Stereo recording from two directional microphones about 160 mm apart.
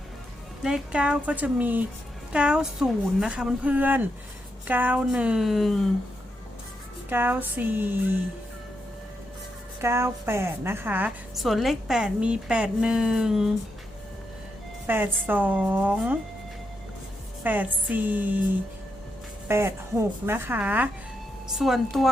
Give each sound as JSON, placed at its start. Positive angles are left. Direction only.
{"t": 0.6, "sound": "speech", "side_deg": -5}
{"t": 7.1, "sound": "speech", "side_deg": -10}
{"t": 9.8, "sound": "speech", "side_deg": -15}
{"t": 11.3, "sound": "a woman's voice", "side_deg": 0}
{"t": 14.8, "sound": "speech", "side_deg": -10}
{"t": 17.4, "sound": "speech", "side_deg": -10}
{"t": 19.5, "sound": "a woman's voice", "side_deg": -15}